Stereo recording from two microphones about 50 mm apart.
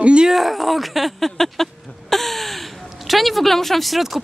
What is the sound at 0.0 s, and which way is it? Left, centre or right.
Speech, right.